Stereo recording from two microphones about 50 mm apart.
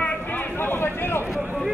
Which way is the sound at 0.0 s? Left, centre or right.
Left.